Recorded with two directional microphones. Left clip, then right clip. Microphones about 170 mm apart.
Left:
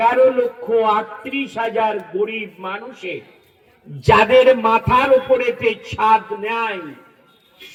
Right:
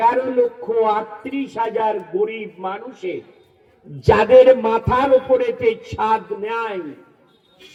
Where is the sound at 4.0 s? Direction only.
30° right (ahead or behind).